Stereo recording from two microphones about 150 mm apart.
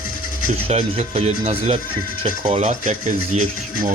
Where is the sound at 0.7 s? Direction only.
45° right (ahead or behind).